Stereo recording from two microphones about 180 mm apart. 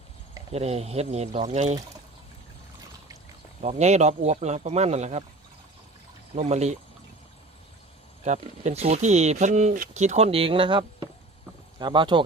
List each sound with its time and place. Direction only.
0.5 s speech: 35° right (ahead or behind)
3.6 s speech: 40° right (ahead or behind)
6.3 s speech: 35° right (ahead or behind)
8.2 s speech: 40° right (ahead or behind)